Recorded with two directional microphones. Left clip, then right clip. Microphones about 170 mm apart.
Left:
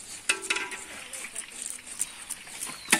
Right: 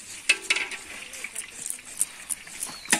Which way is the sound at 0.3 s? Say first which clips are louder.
Right 5 dB; 70° left (ahead or behind).